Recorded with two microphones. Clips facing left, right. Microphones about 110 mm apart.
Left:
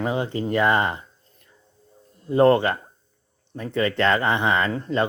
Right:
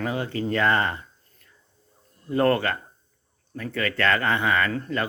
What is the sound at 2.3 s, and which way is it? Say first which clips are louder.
Speech: left 5 dB; 20° left (ahead or behind).